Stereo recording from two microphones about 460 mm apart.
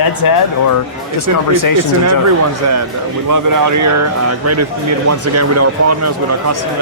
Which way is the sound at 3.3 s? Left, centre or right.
Right.